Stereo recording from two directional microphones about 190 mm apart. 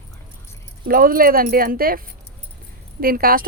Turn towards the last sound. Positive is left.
turn(degrees=-50)  # may be behind; listen again after turning